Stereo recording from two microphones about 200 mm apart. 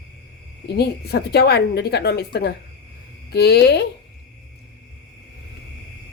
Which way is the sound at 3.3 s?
55° left (ahead or behind).